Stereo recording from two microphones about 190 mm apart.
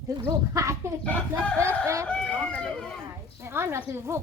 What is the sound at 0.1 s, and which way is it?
Speech, 15° right (ahead or behind).